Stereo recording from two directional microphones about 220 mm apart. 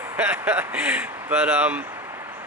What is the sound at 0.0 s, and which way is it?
Speech, 10° right (ahead or behind).